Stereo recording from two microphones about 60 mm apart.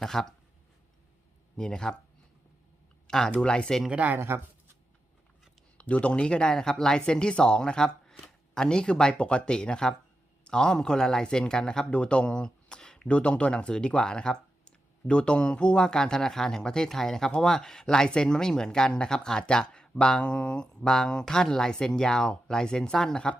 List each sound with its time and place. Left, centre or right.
0.0 s speech: centre
1.5 s speech: centre
3.1 s speech: centre
3.9 s speech: right
5.7 s speech: left